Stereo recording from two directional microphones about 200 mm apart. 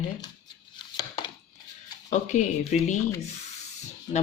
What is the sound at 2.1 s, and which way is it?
Speech, 35° left (ahead or behind).